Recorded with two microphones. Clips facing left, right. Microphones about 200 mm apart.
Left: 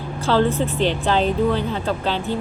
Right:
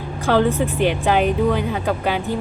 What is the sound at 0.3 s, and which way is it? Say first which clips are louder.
A woman's voice: right 1 dB; 15° right (ahead or behind).